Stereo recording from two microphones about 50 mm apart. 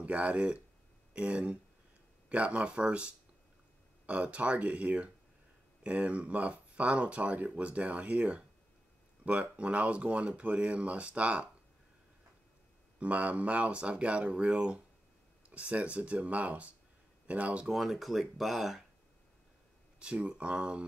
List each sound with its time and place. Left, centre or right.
0.0 s speech: right
13.0 s speech: right
17.6 s speech: centre
20.0 s speech: right